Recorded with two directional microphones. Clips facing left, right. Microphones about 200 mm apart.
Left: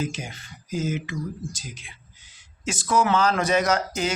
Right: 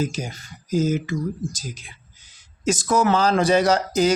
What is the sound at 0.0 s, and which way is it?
Speech, 40° right (ahead or behind).